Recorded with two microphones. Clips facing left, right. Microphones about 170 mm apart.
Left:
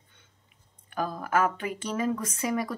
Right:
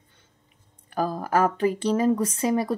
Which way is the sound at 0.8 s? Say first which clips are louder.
Right 5 dB; 35° right (ahead or behind).